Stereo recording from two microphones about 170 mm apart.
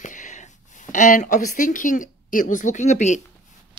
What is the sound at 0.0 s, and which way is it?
Speech, 45° left (ahead or behind).